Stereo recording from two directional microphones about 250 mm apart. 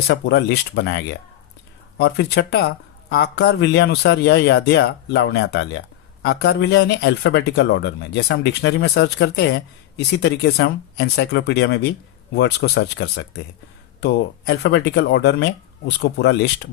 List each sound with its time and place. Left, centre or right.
0.1 s speech: left